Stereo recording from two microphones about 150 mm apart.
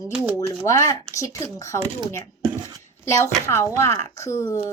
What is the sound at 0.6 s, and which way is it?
Speech, 20° left (ahead or behind).